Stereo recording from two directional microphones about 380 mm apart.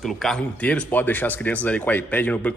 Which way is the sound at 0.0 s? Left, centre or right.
Centre.